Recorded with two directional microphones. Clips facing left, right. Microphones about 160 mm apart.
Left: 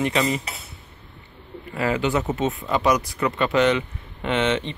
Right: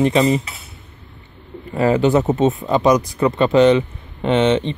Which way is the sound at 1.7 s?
35° right (ahead or behind).